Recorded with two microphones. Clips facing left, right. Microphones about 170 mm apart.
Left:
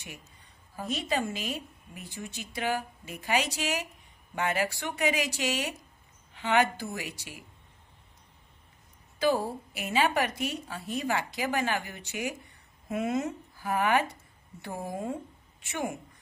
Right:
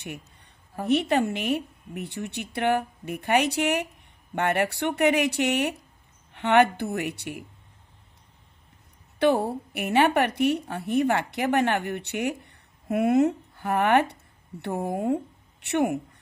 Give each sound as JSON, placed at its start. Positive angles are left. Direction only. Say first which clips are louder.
{"t": 0.7, "sound": "a woman's voice", "louder": "right 8 dB", "side_deg": -65}
{"t": 9.2, "sound": "a woman's voice", "louder": "right 5 dB", "side_deg": -65}